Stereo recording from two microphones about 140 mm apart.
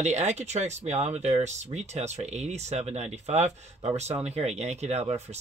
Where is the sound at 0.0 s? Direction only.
55° right (ahead or behind).